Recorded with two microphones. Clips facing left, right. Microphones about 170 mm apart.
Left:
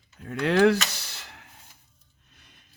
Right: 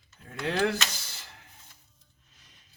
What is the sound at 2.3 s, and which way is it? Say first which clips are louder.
Scissors: left 4 dB; 60° left (ahead or behind).